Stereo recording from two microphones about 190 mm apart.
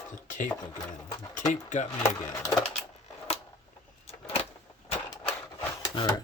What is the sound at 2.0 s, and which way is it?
Speech, 20° left (ahead or behind).